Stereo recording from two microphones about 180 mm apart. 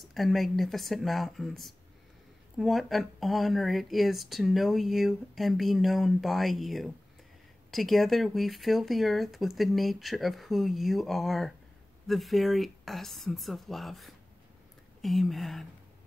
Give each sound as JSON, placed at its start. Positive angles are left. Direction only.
{"t": 0.0, "sound": "speech", "side_deg": 0}